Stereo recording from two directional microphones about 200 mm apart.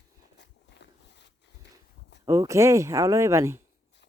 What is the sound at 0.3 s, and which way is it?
Walk, 60° left (ahead or behind).